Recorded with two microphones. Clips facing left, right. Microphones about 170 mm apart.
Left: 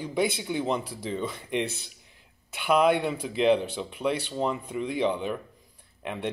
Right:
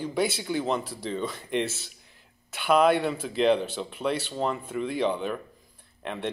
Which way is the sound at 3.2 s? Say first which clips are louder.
Even; 10° left (ahead or behind).